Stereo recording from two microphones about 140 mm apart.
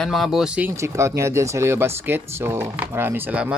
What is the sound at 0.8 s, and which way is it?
Speech, 20° right (ahead or behind).